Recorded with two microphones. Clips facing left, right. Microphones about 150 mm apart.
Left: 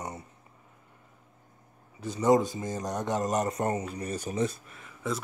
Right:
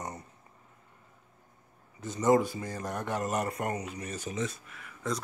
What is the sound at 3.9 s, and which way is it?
Speech, 35° left (ahead or behind).